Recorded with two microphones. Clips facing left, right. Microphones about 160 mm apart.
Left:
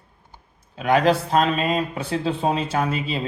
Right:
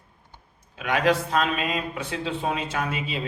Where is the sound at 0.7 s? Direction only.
35° left (ahead or behind).